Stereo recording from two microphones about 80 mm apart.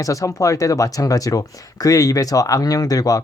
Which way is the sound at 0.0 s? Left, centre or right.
Left.